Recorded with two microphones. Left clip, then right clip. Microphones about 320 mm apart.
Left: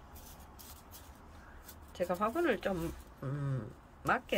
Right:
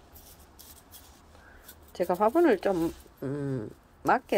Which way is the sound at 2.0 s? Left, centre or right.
Centre.